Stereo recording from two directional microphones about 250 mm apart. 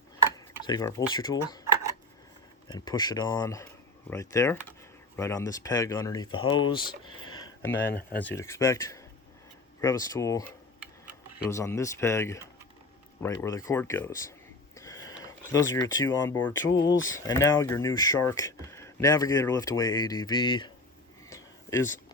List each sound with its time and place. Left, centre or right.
0.6 s speech: centre
2.6 s speech: centre
7.3 s a sound: centre
8.2 s speech: centre
11.4 s speech: centre
14.8 s a sound: centre
16.0 s speech: centre
16.6 s speech: left
17.2 s speech: centre
21.2 s a sound: centre